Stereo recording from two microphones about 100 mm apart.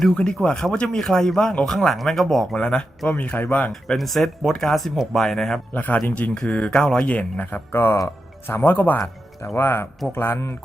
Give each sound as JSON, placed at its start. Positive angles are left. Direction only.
{"t": 0.2, "sound": "speech", "side_deg": 10}
{"t": 3.7, "sound": "speech", "side_deg": 0}
{"t": 5.7, "sound": "speech", "side_deg": 15}